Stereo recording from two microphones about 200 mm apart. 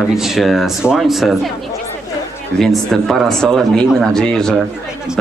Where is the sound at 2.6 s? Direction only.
Centre (ahead or behind).